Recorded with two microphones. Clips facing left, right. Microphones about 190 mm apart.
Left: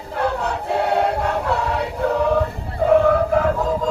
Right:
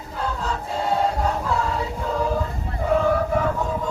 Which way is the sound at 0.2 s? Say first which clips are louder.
Left 5 dB; 70° left (ahead or behind).